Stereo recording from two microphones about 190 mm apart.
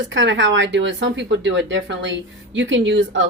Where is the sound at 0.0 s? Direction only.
75° right (ahead or behind).